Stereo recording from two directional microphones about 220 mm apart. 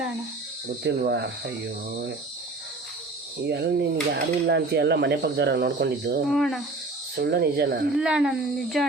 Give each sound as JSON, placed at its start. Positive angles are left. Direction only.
{"t": 0.9, "sound": "speech", "side_deg": -50}
{"t": 3.4, "sound": "speech", "side_deg": -50}
{"t": 6.2, "sound": "speech", "side_deg": 0}
{"t": 7.2, "sound": "speech", "side_deg": -45}
{"t": 7.9, "sound": "speech", "side_deg": -5}